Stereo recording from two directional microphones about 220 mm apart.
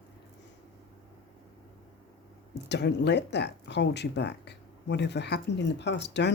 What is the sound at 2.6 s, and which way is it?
Speech, 50° left (ahead or behind).